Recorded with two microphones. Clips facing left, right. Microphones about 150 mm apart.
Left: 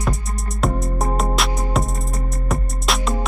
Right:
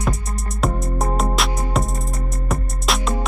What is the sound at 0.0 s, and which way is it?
Music, centre (ahead or behind).